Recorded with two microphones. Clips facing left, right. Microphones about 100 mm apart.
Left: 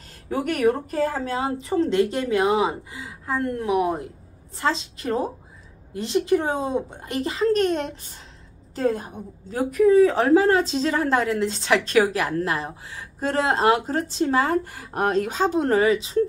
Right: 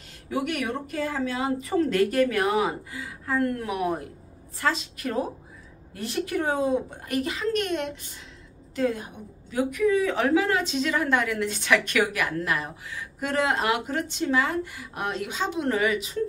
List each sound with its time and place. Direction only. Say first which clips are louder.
0.3 s a woman's voice: left 6 dB; 40° left (ahead or behind)